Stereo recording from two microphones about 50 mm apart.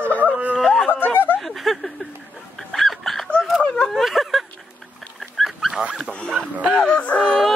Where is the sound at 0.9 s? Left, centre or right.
Left.